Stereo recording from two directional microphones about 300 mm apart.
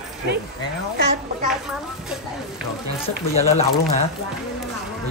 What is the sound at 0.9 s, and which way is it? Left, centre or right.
Speech, right.